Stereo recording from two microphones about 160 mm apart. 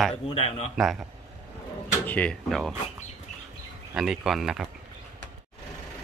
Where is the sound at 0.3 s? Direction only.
40° left (ahead or behind).